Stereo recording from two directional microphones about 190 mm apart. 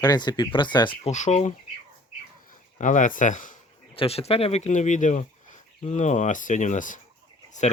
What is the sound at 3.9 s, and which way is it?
Speech, 30° left (ahead or behind).